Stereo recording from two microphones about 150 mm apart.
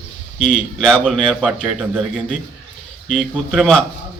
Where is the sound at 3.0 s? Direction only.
Centre (ahead or behind).